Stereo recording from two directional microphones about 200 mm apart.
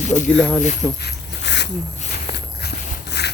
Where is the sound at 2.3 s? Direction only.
55° left (ahead or behind).